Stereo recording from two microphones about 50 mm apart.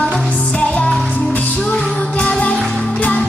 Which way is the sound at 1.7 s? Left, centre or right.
Centre.